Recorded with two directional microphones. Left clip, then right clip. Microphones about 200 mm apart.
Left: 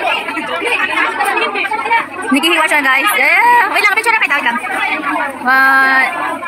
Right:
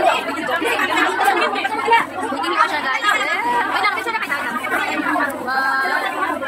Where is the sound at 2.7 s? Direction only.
55° left (ahead or behind).